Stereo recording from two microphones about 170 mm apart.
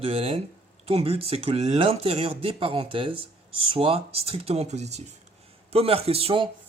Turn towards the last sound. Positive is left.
turn(degrees=-30)  # may be behind; listen again after turning